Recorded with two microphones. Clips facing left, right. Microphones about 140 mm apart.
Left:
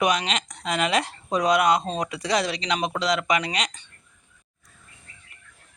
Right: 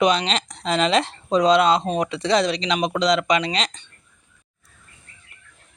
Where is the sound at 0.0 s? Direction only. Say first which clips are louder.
Right 4 dB; 25° right (ahead or behind).